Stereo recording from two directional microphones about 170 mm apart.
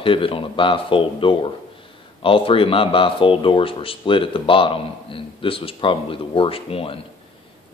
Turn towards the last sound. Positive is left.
turn(degrees=35)  # may be behind; listen again after turning